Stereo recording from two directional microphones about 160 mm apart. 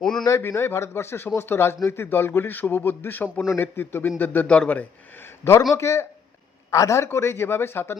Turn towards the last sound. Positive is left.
turn(degrees=15)  # may be behind; listen again after turning